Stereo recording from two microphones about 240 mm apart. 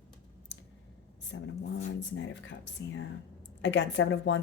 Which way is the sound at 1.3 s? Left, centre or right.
Left.